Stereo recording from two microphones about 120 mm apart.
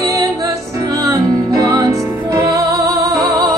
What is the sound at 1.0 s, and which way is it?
Music, 30° right (ahead or behind).